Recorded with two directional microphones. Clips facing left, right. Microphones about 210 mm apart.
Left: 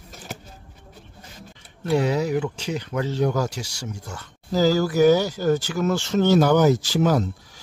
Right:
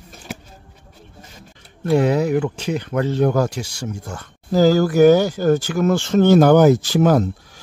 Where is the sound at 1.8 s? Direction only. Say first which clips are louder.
Right 5 dB; 55° right (ahead or behind).